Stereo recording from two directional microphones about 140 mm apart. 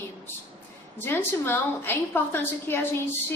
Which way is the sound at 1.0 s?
15° left (ahead or behind).